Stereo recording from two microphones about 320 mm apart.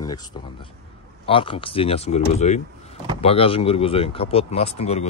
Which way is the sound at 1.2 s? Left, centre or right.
Centre.